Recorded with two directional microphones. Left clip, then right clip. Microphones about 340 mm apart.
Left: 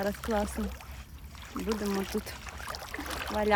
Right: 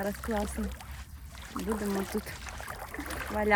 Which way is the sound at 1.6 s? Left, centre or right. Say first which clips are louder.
Left 1 dB; centre.